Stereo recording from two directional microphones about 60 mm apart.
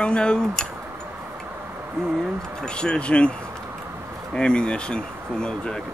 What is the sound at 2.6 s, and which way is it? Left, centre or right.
Speech, centre.